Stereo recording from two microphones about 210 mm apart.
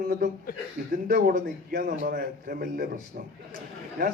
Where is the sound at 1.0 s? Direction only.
45° right (ahead or behind).